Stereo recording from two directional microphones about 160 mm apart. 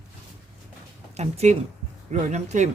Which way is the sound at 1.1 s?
45° right (ahead or behind).